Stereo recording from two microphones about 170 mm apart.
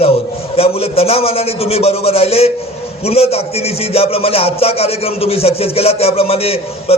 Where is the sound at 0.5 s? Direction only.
35° left (ahead or behind).